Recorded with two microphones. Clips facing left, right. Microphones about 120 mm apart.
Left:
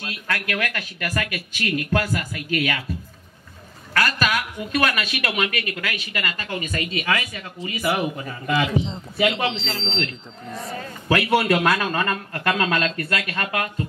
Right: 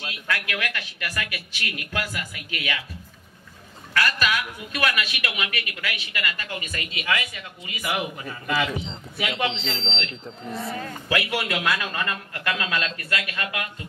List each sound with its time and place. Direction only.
0.1 s speech: 45° left (ahead or behind)
3.9 s speech: 45° left (ahead or behind)